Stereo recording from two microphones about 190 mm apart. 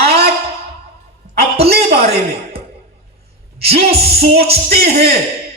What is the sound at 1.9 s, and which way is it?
Speech, 55° right (ahead or behind).